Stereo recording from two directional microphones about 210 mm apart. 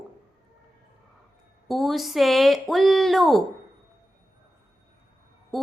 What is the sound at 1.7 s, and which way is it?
Speech, centre (ahead or behind).